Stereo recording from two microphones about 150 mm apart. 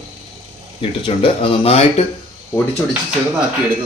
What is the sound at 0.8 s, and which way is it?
Speech, 35° left (ahead or behind).